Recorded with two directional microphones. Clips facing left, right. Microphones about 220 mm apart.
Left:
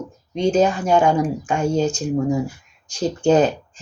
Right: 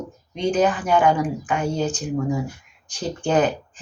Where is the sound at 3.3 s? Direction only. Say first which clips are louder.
Left 4 dB; 25° left (ahead or behind).